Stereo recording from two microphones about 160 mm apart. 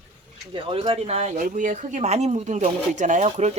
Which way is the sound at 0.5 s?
35° right (ahead or behind).